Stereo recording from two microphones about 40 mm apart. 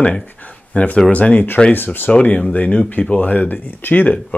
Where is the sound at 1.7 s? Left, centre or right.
Left.